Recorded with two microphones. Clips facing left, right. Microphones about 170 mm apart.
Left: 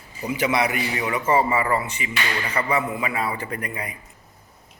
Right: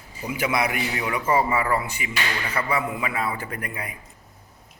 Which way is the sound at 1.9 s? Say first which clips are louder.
Left 1 dB; 10° right (ahead or behind).